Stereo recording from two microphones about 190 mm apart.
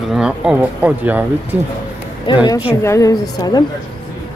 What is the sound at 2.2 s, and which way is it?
A woman's voice, 25° left (ahead or behind).